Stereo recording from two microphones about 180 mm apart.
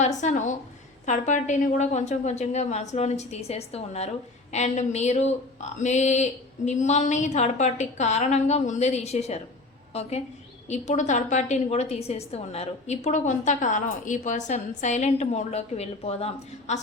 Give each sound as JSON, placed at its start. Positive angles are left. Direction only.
{"t": 0.0, "sound": "a woman's voice", "side_deg": 40}